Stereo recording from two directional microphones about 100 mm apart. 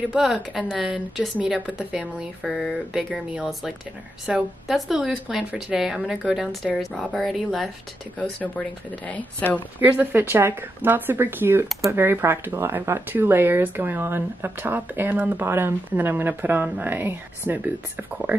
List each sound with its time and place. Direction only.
0.1 s speech: 5° right (ahead or behind)
8.2 s speech: 15° left (ahead or behind)
9.8 s speech: 20° right (ahead or behind)